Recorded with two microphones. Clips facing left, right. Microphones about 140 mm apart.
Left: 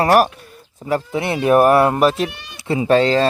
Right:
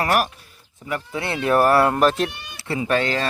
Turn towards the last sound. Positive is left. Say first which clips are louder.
# left 7 dB
turn(degrees=25)  # may be behind; listen again after turning